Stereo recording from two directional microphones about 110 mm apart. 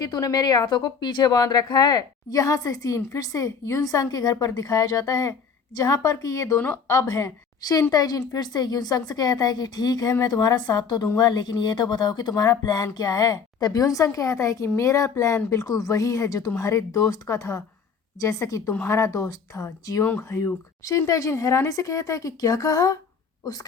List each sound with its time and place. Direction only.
0.0 s a woman's voice: 35° left (ahead or behind)
6.6 s speech: 20° left (ahead or behind)
6.9 s a woman's voice: 30° left (ahead or behind)